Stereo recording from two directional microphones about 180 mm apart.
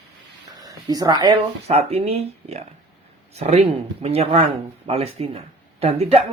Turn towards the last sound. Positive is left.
turn(degrees=-30)  # may be behind; listen again after turning